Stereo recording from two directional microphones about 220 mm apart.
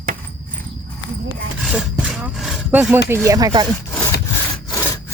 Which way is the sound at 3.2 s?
15° right (ahead or behind).